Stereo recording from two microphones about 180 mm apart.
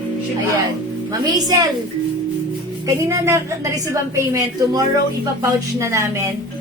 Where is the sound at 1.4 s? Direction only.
20° right (ahead or behind).